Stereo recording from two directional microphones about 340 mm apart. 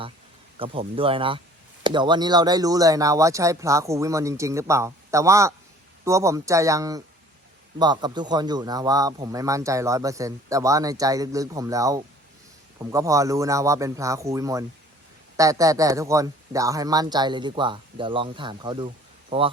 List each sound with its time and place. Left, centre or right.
0.6 s speech: centre